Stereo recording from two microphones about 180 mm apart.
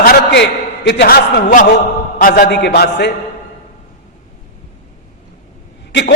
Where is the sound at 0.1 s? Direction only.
70° left (ahead or behind).